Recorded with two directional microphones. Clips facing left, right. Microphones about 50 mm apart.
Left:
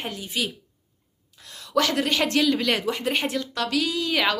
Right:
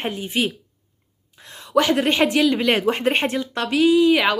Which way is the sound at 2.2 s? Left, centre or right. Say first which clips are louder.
Right 3 dB; centre.